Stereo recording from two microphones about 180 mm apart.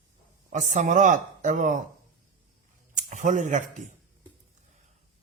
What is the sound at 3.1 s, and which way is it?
Speech, 45° right (ahead or behind).